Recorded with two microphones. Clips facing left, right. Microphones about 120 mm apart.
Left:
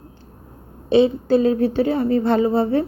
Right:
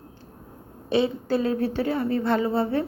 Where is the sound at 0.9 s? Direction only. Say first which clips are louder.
Left 7 dB; 20° left (ahead or behind).